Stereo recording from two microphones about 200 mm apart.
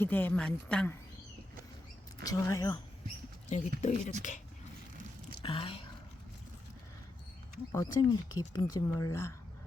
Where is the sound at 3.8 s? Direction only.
35° left (ahead or behind).